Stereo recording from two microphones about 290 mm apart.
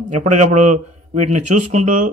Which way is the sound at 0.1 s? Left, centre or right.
Right.